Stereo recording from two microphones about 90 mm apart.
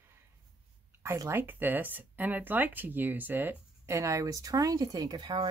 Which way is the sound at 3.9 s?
35° right (ahead or behind).